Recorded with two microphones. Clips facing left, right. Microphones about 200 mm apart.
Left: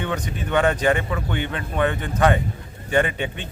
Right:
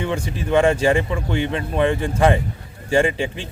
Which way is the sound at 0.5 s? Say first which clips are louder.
Right 3 dB; 25° right (ahead or behind).